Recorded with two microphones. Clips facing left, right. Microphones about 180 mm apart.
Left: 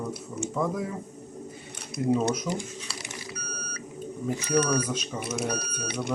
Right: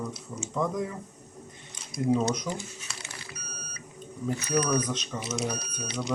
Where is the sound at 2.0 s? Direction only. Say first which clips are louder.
Left 1 dB; centre (ahead or behind).